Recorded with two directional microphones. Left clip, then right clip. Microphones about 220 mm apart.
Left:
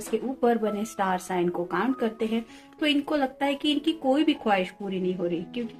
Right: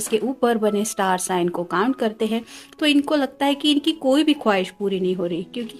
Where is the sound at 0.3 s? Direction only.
55° right (ahead or behind).